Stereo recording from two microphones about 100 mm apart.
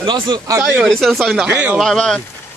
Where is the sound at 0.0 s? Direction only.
50° right (ahead or behind).